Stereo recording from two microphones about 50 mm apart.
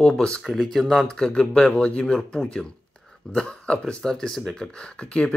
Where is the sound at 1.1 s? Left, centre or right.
Centre.